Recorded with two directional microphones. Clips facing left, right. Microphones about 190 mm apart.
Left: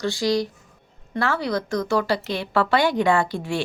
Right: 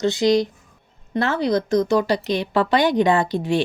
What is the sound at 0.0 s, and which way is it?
Speech, 20° right (ahead or behind).